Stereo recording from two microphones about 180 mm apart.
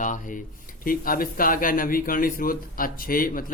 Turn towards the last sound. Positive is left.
turn(degrees=50)  # may be behind; listen again after turning